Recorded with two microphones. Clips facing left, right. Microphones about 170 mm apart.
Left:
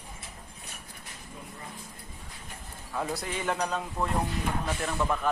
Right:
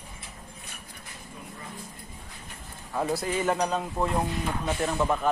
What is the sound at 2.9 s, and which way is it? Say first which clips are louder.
Speech: right 4 dB; 15° right (ahead or behind).